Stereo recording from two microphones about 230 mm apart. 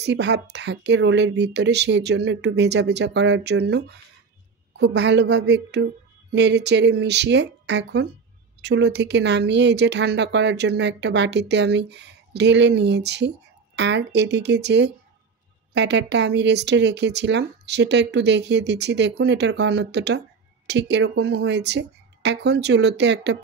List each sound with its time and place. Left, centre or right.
0.0 s speech: right